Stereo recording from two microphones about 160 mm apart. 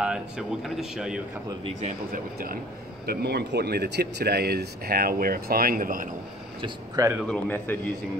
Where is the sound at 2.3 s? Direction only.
65° right (ahead or behind).